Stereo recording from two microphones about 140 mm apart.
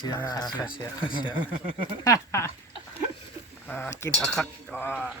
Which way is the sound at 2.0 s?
20° left (ahead or behind).